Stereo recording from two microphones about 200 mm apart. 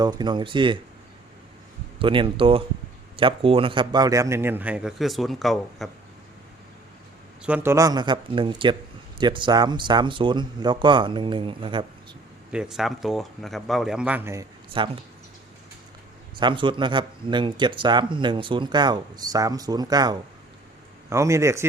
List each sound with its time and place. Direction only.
0.0 s speech: 20° right (ahead or behind)
2.0 s speech: 25° right (ahead or behind); by 5.9 s centre (ahead or behind)
7.4 s speech: 10° right (ahead or behind); by 11.9 s 25° right (ahead or behind)
12.5 s speech: 5° right (ahead or behind)
14.8 s speech: 25° right (ahead or behind)
16.4 s speech: 25° right (ahead or behind)